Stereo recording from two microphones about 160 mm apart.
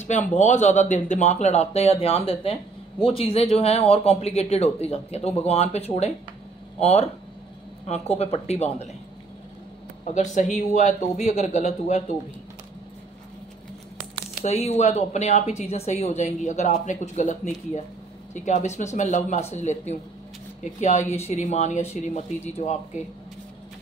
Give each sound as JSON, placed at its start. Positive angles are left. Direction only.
{"t": 0.0, "sound": "speech", "side_deg": 50}
{"t": 10.0, "sound": "speech", "side_deg": 45}
{"t": 14.4, "sound": "speech", "side_deg": 45}